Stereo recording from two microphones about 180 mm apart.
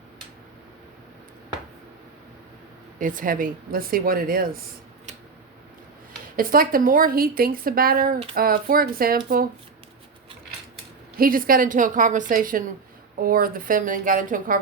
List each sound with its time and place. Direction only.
3.0 s a woman's voice: 50° right (ahead or behind)
6.3 s a woman's voice: 50° right (ahead or behind)
11.2 s a woman's voice: 50° right (ahead or behind)